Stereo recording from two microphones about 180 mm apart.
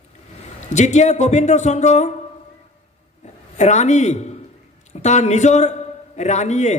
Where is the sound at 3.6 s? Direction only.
40° left (ahead or behind).